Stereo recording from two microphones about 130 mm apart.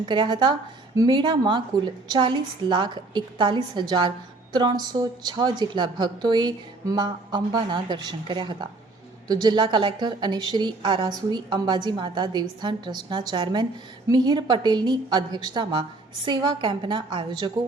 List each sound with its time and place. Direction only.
0.0 s a woman's voice: 35° right (ahead or behind)